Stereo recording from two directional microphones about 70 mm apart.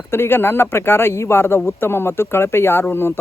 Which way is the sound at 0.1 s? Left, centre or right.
Left.